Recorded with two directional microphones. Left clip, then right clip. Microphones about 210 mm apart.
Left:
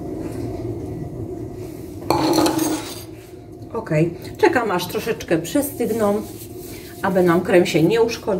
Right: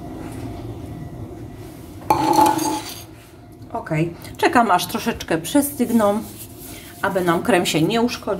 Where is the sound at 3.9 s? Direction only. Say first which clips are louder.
Left 5 dB; 50° right (ahead or behind).